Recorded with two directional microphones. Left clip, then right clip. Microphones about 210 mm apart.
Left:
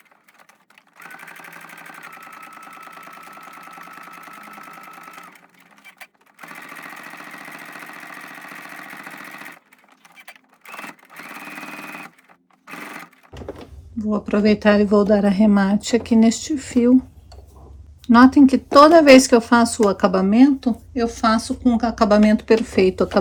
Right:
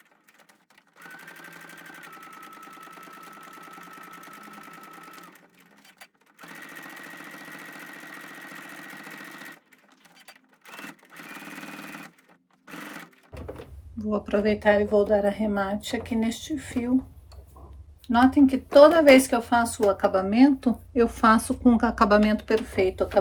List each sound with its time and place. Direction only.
14.1 s speech: 15° left (ahead or behind)
18.0 s speech: 30° left (ahead or behind)
20.6 s a woman's voice: 5° right (ahead or behind); by 23.0 s 25° left (ahead or behind)